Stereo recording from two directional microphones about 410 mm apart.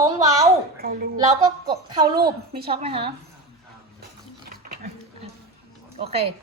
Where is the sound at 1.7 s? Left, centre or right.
Centre.